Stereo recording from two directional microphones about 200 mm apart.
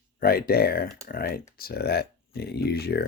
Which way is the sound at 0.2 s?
50° left (ahead or behind).